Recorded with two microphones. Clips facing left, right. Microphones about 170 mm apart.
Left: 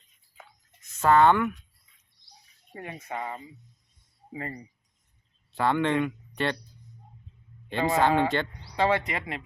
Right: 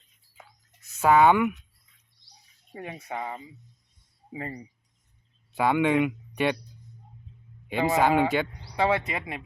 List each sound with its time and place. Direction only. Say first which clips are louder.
0.9 s speech: right 1 dB; 10° right (ahead or behind)
2.7 s speech: right 1 dB; 15° right (ahead or behind)
7.7 s speech: right 1 dB; 10° right (ahead or behind)